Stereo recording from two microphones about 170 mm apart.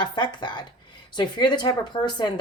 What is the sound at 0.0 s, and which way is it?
Speech, 25° left (ahead or behind).